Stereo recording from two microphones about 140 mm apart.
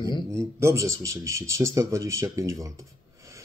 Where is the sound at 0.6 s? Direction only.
20° right (ahead or behind).